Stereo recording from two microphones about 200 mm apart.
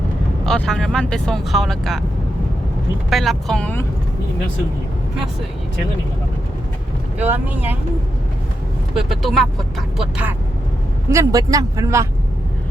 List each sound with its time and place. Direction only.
0.4 s speech: 5° left (ahead or behind)
3.1 s speech: centre (ahead or behind)
7.2 s speech: 10° right (ahead or behind)
9.0 s speech: centre (ahead or behind)
11.1 s speech: 15° right (ahead or behind)